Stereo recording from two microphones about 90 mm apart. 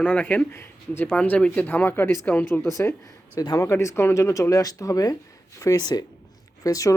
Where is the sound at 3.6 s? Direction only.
30° left (ahead or behind).